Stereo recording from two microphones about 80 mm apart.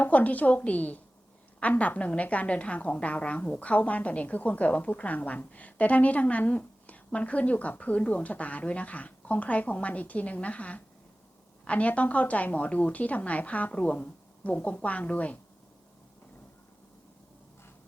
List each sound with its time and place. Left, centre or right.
0.0 s a woman's voice: left